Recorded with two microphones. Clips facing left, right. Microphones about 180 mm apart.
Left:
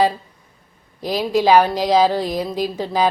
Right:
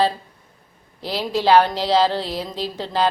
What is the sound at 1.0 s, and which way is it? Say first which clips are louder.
A woman's voice: left 3 dB; 15° left (ahead or behind).